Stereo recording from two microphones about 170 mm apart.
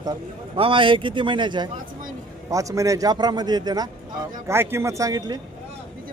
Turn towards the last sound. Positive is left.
turn(degrees=-20)  # may be behind; listen again after turning